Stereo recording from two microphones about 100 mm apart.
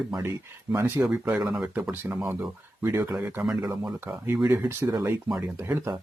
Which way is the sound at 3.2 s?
20° right (ahead or behind).